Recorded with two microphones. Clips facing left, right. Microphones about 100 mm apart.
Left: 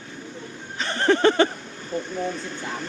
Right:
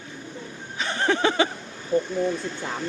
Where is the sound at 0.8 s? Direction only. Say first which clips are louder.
Left 4 dB; 10° right (ahead or behind).